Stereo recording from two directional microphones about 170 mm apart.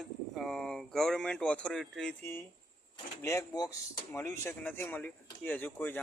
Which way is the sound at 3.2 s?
15° left (ahead or behind).